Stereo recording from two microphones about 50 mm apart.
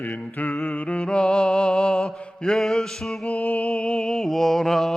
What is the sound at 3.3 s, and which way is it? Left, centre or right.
Music, left.